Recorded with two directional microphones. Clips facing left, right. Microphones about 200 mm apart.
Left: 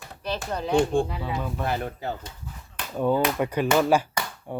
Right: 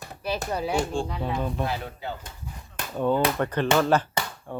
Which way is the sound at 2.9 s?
10° left (ahead or behind).